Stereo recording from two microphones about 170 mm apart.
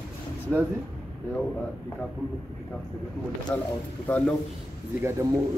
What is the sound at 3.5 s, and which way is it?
Speech, 10° left (ahead or behind).